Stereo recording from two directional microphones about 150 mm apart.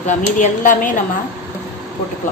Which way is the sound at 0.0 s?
55° left (ahead or behind).